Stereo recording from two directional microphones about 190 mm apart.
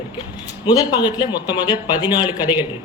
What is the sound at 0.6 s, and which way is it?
Speech, 20° left (ahead or behind).